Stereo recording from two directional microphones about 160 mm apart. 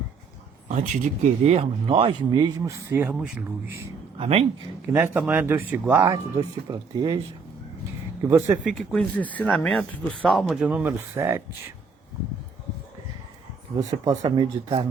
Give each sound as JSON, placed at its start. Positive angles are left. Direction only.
{"t": 0.7, "sound": "speech", "side_deg": -50}
{"t": 4.2, "sound": "speech", "side_deg": -40}
{"t": 4.9, "sound": "speech", "side_deg": -15}
{"t": 6.7, "sound": "speech", "side_deg": -25}
{"t": 8.3, "sound": "speech", "side_deg": -10}
{"t": 8.8, "sound": "speech", "side_deg": 5}
{"t": 14.2, "sound": "speech", "side_deg": -35}